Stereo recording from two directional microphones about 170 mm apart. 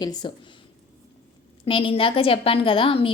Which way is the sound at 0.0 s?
25° left (ahead or behind).